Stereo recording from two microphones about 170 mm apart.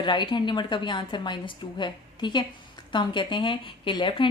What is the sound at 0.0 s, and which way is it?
Speech, 30° left (ahead or behind).